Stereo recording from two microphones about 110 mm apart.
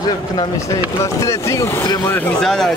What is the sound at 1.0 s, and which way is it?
Speech, 25° left (ahead or behind).